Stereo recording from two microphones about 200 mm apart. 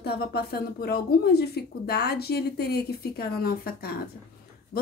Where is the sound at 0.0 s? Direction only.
50° left (ahead or behind).